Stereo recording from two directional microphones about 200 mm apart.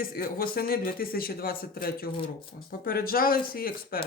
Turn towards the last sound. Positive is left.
turn(degrees=50)  # may be behind; listen again after turning